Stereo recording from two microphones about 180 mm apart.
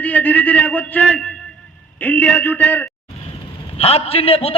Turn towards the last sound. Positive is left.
turn(degrees=35)  # may be behind; listen again after turning